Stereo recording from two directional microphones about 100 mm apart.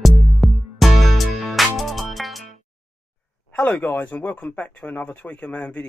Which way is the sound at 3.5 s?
15° left (ahead or behind).